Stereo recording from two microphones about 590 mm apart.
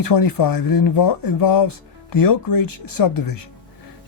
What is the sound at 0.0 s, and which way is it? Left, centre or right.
Speech, left.